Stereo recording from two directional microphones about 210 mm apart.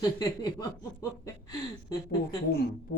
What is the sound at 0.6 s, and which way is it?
Speech, 15° left (ahead or behind).